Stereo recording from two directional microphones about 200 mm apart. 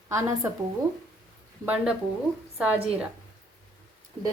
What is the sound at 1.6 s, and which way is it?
Speech, 5° right (ahead or behind).